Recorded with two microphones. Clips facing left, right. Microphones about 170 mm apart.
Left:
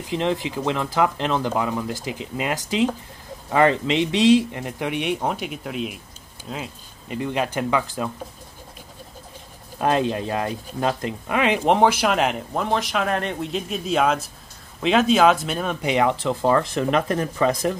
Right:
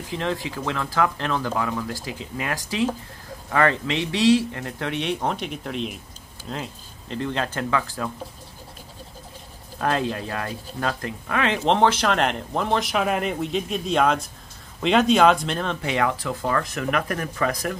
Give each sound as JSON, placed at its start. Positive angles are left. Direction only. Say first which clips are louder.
{"t": 0.1, "sound": "speech", "louder": "left 4 dB", "side_deg": 20}
{"t": 9.8, "sound": "speech", "louder": "left 3 dB", "side_deg": 20}